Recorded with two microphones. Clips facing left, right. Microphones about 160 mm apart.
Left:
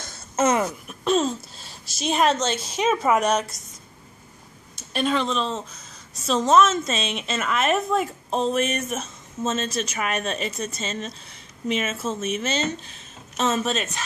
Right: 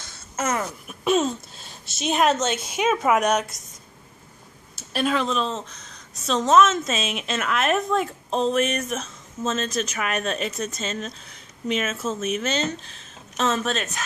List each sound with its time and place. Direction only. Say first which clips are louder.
0.4 s a sound: left 5 dB; 20° left (ahead or behind)
0.8 s a woman's voice: right 4 dB; 5° right (ahead or behind)
4.7 s a woman's voice: even; 5° right (ahead or behind)